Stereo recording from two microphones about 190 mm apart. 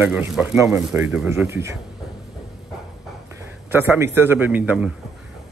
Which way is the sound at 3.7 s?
10° right (ahead or behind).